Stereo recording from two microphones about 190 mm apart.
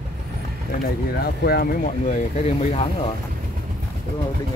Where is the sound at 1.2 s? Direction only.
55° left (ahead or behind).